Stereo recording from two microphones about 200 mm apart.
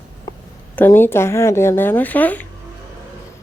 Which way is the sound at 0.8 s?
10° left (ahead or behind).